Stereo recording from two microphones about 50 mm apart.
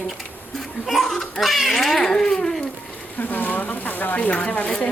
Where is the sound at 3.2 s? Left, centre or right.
Left.